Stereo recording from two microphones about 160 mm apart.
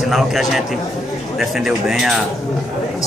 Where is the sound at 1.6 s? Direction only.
Centre (ahead or behind).